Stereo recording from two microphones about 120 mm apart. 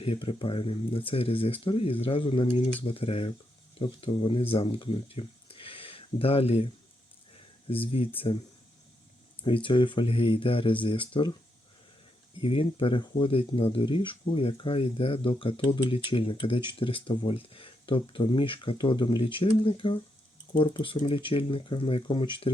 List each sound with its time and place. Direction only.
0.0 s speech: 50° left (ahead or behind)
7.7 s speech: 50° left (ahead or behind)
9.4 s speech: 45° left (ahead or behind)
12.4 s speech: 50° left (ahead or behind)